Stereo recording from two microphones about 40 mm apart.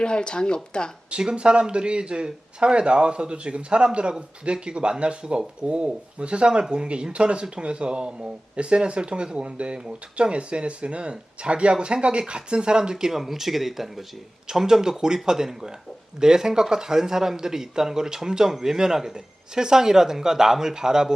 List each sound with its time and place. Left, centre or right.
0.0 s speech: left
1.2 s a man's voice: right